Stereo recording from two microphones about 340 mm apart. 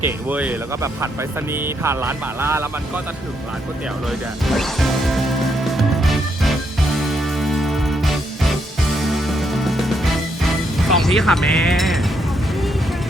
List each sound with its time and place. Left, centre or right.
0.0 s speech: centre
4.4 s speech: centre
5.6 s music: centre